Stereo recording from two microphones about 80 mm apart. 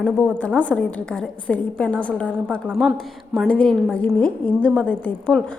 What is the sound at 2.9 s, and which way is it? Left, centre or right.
Speech, centre.